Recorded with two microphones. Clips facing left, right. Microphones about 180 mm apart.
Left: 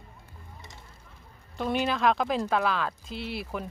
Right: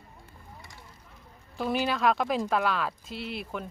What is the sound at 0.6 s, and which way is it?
Vehicle, 20° left (ahead or behind).